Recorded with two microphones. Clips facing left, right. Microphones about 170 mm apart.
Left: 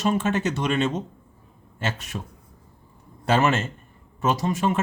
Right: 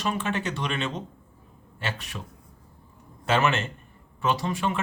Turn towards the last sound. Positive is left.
turn(degrees=45)  # may be behind; listen again after turning